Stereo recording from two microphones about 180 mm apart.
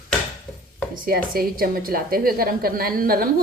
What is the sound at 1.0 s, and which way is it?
A woman's voice, 55° right (ahead or behind).